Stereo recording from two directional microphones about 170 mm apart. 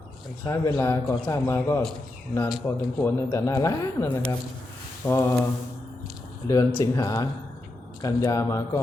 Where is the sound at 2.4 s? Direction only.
Centre (ahead or behind).